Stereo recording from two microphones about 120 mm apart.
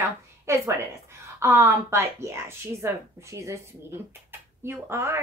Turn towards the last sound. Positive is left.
turn(degrees=-20)  # may be behind; listen again after turning